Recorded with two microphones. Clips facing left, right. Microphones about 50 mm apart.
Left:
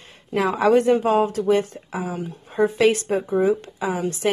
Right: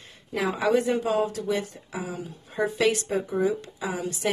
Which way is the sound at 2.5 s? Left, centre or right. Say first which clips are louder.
Left 6 dB; left.